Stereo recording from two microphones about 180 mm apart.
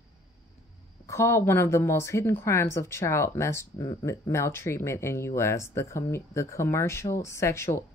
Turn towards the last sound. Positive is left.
turn(degrees=15)  # may be behind; listen again after turning